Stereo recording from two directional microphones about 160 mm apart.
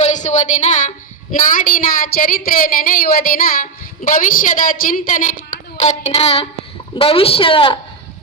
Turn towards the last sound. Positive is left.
turn(degrees=35)  # may be behind; listen again after turning